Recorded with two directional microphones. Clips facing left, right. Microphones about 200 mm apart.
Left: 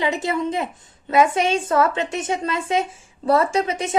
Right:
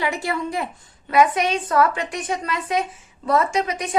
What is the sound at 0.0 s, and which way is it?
A woman's voice, 20° left (ahead or behind).